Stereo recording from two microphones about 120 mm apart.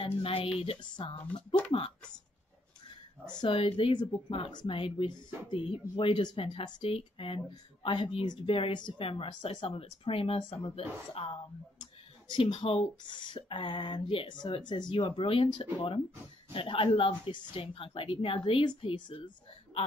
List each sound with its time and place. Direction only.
0.0 s speech: 50° left (ahead or behind)
3.3 s speech: 45° left (ahead or behind)